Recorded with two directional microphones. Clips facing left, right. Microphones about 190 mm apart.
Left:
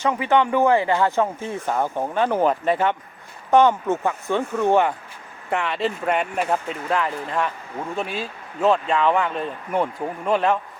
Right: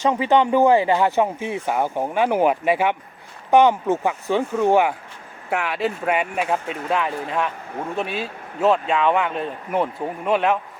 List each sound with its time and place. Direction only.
0.0 s speech: 20° right (ahead or behind)
8.6 s speech: 5° right (ahead or behind)